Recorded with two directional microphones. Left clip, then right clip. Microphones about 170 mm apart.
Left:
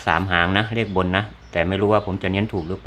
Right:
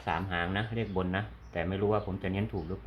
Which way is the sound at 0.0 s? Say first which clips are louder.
Left 13 dB; 40° left (ahead or behind).